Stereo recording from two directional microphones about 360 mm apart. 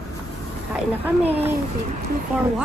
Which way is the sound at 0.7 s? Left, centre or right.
Centre.